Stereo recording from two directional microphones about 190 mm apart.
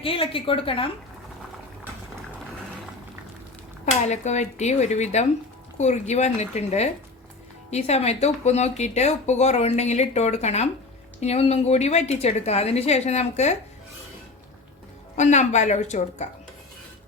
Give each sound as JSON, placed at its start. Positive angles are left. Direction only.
{"t": 0.0, "sound": "a woman's voice", "side_deg": 30}
{"t": 4.0, "sound": "speech", "side_deg": 35}
{"t": 15.1, "sound": "speech", "side_deg": 40}